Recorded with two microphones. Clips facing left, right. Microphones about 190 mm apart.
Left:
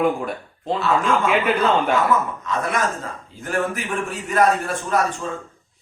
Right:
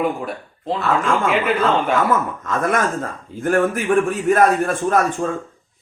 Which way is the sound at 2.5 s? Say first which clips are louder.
Right 4 dB; 50° right (ahead or behind).